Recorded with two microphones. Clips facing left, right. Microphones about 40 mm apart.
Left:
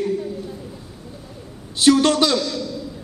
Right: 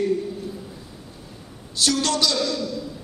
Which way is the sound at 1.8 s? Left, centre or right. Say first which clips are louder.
Left 7 dB; left.